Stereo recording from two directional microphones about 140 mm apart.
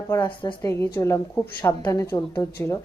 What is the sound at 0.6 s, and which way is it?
Speech, 20° left (ahead or behind).